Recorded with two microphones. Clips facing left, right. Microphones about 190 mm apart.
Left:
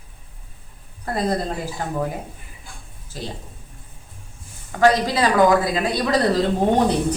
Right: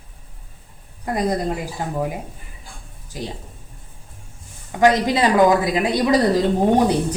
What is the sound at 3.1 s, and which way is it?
Speech, 15° right (ahead or behind).